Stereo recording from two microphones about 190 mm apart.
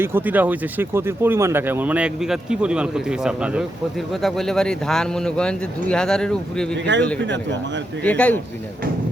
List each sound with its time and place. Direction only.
0.0 s speech: 10° right (ahead or behind)
6.9 s speech: 70° right (ahead or behind)
8.0 s speech: 5° left (ahead or behind)